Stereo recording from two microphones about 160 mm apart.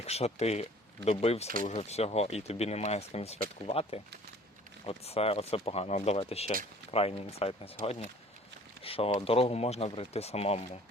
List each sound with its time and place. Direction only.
0.0 s speech: 40° left (ahead or behind)